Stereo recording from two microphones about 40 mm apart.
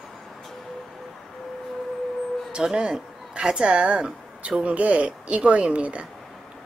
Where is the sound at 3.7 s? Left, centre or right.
Right.